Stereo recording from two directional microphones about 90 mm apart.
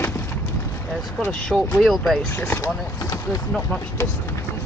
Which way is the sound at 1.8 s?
Centre (ahead or behind).